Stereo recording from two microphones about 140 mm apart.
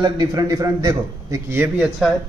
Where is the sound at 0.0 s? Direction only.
30° right (ahead or behind).